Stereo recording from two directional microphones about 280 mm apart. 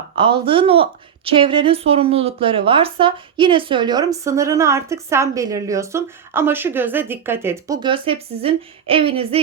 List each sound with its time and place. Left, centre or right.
0.4 s a woman's voice: centre